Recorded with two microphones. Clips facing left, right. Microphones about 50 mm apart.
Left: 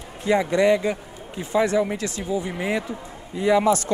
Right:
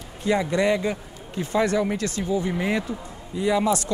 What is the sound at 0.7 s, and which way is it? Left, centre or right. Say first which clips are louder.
Speech: left 3 dB; centre.